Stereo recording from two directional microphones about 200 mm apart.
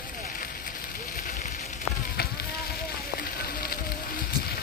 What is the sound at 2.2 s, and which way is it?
Fire, 50° left (ahead or behind).